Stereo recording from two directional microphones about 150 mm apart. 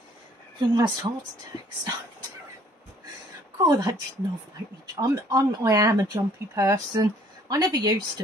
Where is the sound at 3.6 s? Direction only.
25° right (ahead or behind).